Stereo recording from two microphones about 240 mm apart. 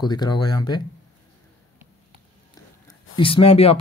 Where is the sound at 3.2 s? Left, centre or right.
Left.